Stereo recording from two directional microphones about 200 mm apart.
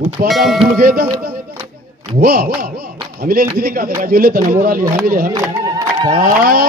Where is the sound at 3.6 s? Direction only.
45° right (ahead or behind).